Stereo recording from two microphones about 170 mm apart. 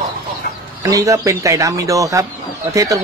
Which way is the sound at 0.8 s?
20° right (ahead or behind).